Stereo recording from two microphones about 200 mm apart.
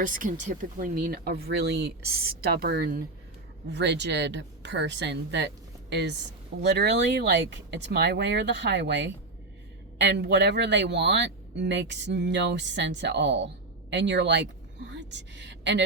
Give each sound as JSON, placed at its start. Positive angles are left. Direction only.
{"t": 0.0, "sound": "speech", "side_deg": -40}
{"t": 3.7, "sound": "speech", "side_deg": -60}
{"t": 10.2, "sound": "speech", "side_deg": -60}